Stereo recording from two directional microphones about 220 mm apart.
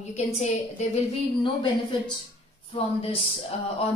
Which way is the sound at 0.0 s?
30° left (ahead or behind).